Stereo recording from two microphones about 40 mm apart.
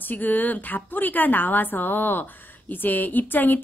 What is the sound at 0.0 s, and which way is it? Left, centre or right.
A woman's voice, left.